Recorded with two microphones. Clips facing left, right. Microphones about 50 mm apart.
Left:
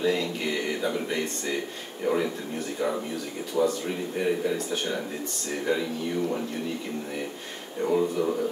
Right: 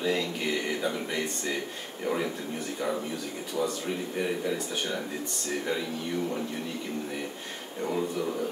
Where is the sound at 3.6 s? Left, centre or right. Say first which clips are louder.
Left 6 dB; centre.